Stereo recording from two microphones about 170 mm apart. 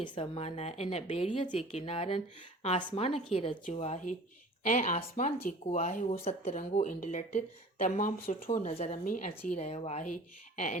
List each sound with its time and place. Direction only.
0.0 s a woman's voice: 35° left (ahead or behind)